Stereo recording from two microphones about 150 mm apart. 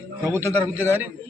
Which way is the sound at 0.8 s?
15° right (ahead or behind).